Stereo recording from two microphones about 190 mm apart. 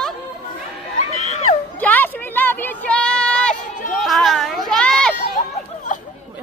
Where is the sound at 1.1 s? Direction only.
35° left (ahead or behind).